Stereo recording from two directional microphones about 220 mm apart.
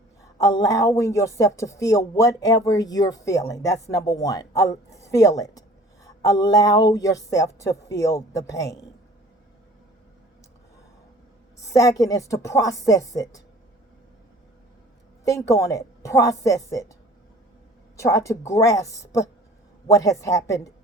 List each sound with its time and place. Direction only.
0.2 s a woman's voice: 15° left (ahead or behind)
11.6 s a woman's voice: 15° left (ahead or behind)
15.2 s a woman's voice: 15° left (ahead or behind)
17.9 s a woman's voice: 15° left (ahead or behind)